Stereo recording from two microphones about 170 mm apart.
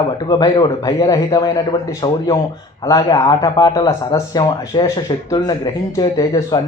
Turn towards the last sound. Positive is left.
turn(degrees=20)  # may be behind; listen again after turning